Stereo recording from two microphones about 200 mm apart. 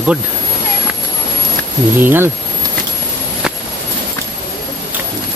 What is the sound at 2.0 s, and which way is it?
Speech, 10° right (ahead or behind).